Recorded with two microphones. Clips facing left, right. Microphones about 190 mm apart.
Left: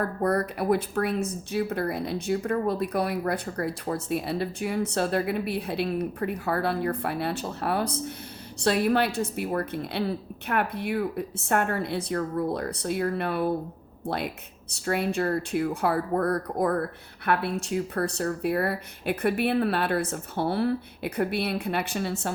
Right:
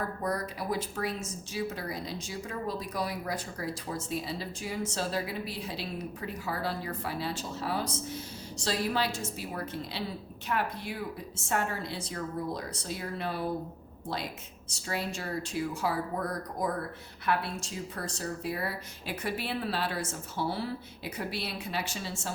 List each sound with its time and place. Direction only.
0.2 s speech: 60° left (ahead or behind)